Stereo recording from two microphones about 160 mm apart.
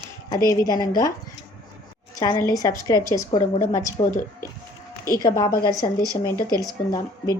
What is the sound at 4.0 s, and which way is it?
Speech, 55° left (ahead or behind).